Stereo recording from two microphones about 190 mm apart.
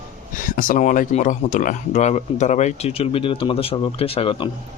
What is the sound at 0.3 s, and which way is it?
Speech, 45° left (ahead or behind).